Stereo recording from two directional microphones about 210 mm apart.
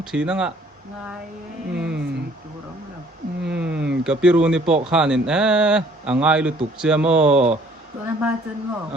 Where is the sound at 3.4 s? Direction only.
5° right (ahead or behind).